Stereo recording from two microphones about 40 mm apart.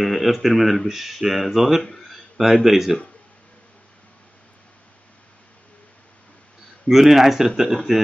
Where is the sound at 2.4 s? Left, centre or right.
Centre.